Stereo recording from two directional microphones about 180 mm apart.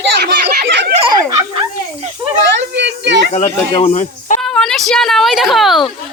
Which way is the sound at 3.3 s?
35° left (ahead or behind).